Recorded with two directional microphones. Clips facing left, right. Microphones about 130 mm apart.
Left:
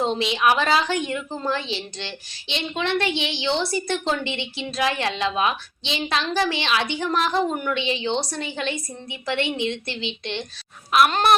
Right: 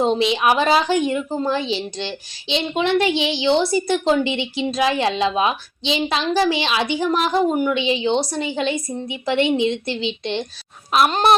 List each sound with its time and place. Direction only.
0.0 s a woman's voice: 20° right (ahead or behind)